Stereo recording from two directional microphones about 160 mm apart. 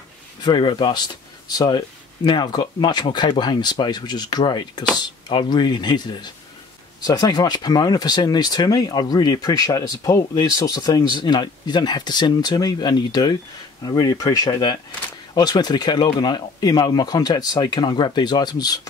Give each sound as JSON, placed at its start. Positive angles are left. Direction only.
{"t": 0.4, "sound": "speech", "side_deg": 30}